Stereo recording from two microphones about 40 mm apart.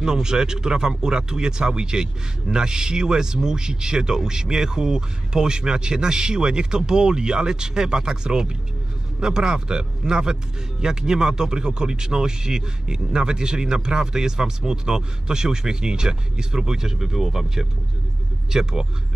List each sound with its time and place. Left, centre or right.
0.0 s speech: centre